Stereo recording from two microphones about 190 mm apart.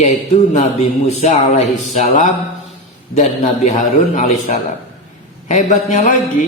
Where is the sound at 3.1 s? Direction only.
40° left (ahead or behind).